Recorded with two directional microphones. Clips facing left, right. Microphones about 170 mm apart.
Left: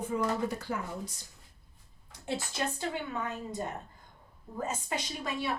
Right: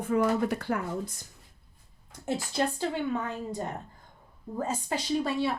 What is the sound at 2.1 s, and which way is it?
Speech, 40° right (ahead or behind).